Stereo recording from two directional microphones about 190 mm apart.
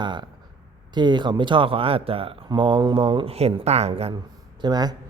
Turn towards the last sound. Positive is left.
turn(degrees=-20)  # may be behind; listen again after turning